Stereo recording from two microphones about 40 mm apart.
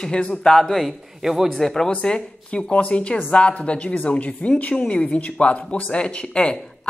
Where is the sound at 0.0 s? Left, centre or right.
Left.